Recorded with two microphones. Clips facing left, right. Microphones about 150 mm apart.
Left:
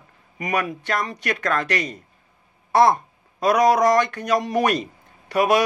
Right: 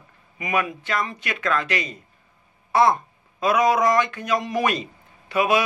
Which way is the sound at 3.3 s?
40° left (ahead or behind).